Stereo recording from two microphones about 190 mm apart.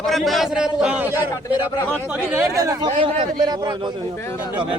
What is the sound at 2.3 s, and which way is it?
Speech, 15° right (ahead or behind).